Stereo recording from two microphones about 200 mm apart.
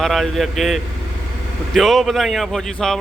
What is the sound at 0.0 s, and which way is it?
Speech, centre (ahead or behind).